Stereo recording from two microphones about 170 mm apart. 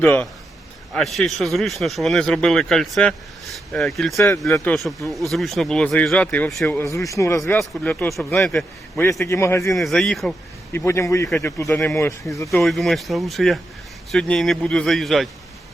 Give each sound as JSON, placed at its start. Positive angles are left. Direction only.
{"t": 0.0, "sound": "a man's voice", "side_deg": 10}
{"t": 4.4, "sound": "a man's voice", "side_deg": 15}
{"t": 4.7, "sound": "a man's voice", "side_deg": 0}
{"t": 6.7, "sound": "a man's voice", "side_deg": 20}
{"t": 9.0, "sound": "a man's voice", "side_deg": 15}
{"t": 9.7, "sound": "a man's voice", "side_deg": 0}
{"t": 10.7, "sound": "a man's voice", "side_deg": 15}
{"t": 12.5, "sound": "a man's voice", "side_deg": 0}